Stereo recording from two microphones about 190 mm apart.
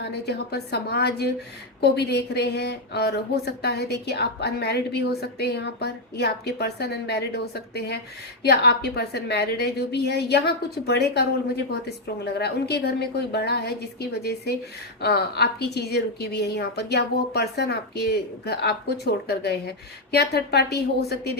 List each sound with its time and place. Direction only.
0.0 s a woman's voice: 60° left (ahead or behind)